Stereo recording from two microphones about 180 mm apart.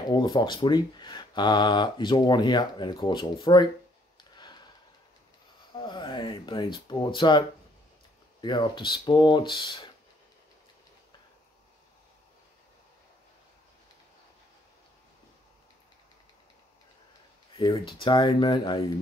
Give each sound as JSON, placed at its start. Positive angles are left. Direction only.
{"t": 0.1, "sound": "speech", "side_deg": 25}
{"t": 4.2, "sound": "a sound", "side_deg": 25}
{"t": 5.8, "sound": "speech", "side_deg": 25}
{"t": 17.6, "sound": "speech", "side_deg": 25}